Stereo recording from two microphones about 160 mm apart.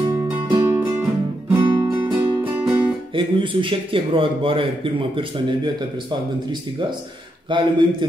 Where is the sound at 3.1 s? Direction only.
30° right (ahead or behind).